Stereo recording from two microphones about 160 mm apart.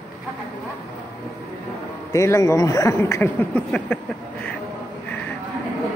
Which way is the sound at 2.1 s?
20° left (ahead or behind).